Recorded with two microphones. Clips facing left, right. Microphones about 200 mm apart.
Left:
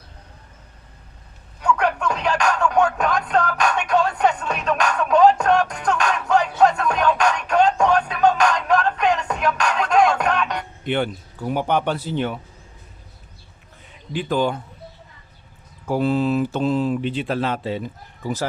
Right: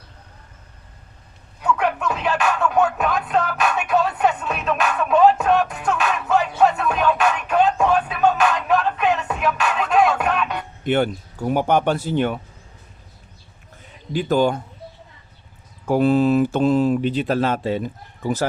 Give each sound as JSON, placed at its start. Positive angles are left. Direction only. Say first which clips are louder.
{"t": 1.6, "sound": "music", "louder": "even", "side_deg": -5}
{"t": 10.8, "sound": "speech", "louder": "right 4 dB", "side_deg": -45}
{"t": 14.1, "sound": "speech", "louder": "right 3 dB", "side_deg": -45}
{"t": 15.9, "sound": "speech", "louder": "right 4 dB", "side_deg": -55}